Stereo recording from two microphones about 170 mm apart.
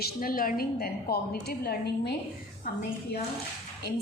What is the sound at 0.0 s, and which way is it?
A woman's voice, 60° left (ahead or behind).